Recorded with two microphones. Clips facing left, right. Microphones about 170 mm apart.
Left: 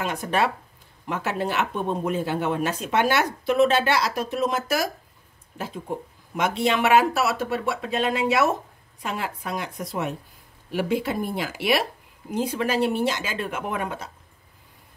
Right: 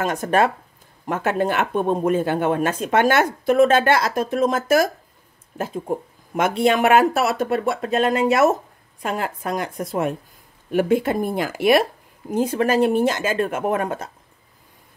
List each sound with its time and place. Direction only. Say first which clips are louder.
0.0 s speech: right 5 dB; 45° right (ahead or behind)